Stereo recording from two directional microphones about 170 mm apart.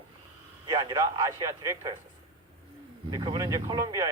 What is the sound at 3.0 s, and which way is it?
A man's voice, 25° right (ahead or behind).